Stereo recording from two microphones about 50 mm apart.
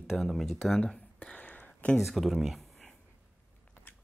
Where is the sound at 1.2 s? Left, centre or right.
Left.